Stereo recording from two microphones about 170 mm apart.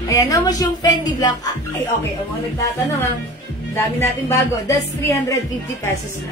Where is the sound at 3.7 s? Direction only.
15° left (ahead or behind).